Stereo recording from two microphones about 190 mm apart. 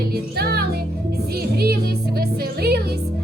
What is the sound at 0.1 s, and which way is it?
Music, 55° right (ahead or behind).